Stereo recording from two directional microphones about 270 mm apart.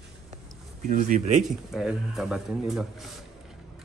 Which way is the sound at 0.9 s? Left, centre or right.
Right.